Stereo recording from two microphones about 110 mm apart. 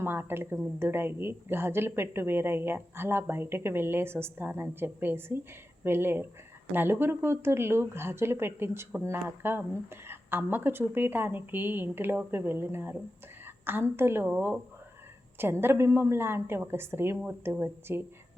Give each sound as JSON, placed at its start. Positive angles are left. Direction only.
{"t": 0.0, "sound": "speech", "side_deg": -20}